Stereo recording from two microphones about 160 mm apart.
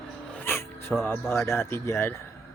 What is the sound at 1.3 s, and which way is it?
Speech, 15° left (ahead or behind).